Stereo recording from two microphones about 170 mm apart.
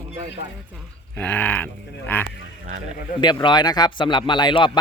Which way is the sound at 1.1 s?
10° left (ahead or behind).